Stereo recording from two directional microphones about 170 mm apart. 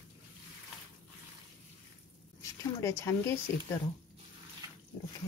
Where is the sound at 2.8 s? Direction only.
15° left (ahead or behind).